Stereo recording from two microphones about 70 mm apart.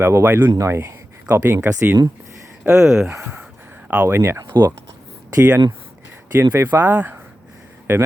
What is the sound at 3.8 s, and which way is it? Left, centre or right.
Speech, right.